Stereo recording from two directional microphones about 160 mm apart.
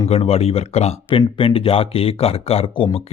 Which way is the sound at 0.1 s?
40° left (ahead or behind).